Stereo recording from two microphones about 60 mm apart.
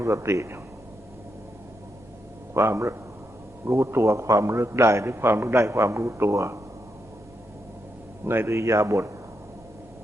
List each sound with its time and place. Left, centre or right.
0.0 s speech: right
2.5 s a man's voice: right
5.1 s speech: right
5.5 s speech: right
6.3 s a man's voice: right
8.2 s speech: right